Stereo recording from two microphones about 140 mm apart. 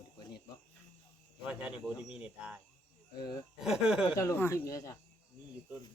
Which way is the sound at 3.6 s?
5° right (ahead or behind).